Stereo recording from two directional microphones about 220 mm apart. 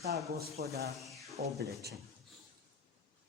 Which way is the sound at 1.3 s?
45° right (ahead or behind).